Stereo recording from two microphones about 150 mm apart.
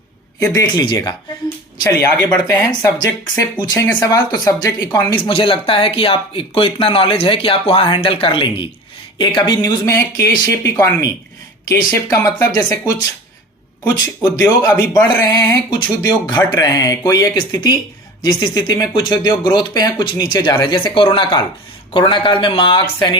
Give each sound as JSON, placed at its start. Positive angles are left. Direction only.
{"t": 0.3, "sound": "speech", "side_deg": 20}
{"t": 13.9, "sound": "speech", "side_deg": 20}